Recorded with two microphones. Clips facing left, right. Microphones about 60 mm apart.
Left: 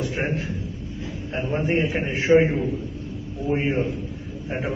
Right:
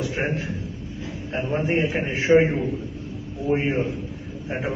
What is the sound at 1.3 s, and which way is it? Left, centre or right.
A man's voice, centre.